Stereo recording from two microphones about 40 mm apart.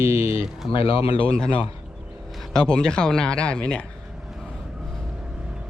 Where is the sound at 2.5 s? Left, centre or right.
Centre.